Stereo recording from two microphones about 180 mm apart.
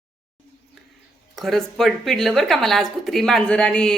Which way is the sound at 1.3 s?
Centre (ahead or behind).